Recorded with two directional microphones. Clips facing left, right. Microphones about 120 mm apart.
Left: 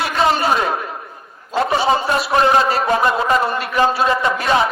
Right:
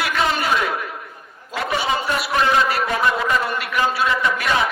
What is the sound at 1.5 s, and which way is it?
A man's voice, 30° left (ahead or behind).